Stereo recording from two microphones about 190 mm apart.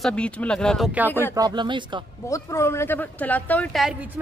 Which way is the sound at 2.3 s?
15° left (ahead or behind).